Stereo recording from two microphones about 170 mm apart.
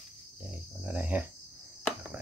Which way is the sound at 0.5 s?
10° right (ahead or behind).